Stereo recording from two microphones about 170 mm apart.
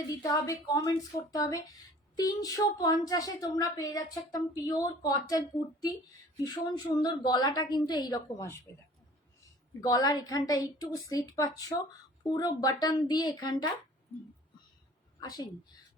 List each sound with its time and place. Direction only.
0.2 s a woman's voice: 20° left (ahead or behind)
6.4 s a woman's voice: 25° left (ahead or behind)
15.2 s a woman's voice: 25° left (ahead or behind)